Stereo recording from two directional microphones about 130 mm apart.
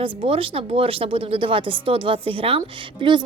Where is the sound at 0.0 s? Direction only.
45° right (ahead or behind).